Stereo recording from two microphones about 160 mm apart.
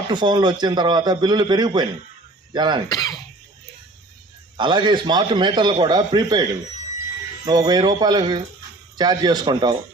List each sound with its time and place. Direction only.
0.1 s a man's voice: 25° right (ahead or behind)
2.9 s speech: 25° left (ahead or behind)
4.5 s a man's voice: 30° right (ahead or behind)